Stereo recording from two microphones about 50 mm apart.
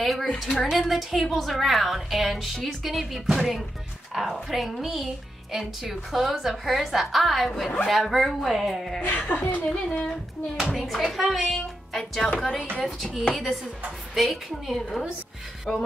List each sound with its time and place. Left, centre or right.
0.0 s speech: centre
9.0 s a woman's voice: left
9.7 s speech: centre
10.6 s speech: centre
12.4 s speech: centre
12.8 s speech: centre